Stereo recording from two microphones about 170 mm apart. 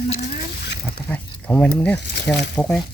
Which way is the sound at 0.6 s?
80° left.